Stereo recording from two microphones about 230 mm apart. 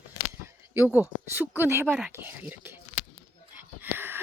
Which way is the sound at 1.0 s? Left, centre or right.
Centre.